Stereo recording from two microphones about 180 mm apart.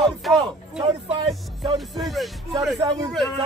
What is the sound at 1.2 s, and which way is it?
Music, 25° right (ahead or behind).